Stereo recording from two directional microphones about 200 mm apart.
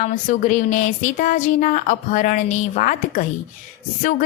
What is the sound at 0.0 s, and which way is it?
A woman's voice, 40° left (ahead or behind).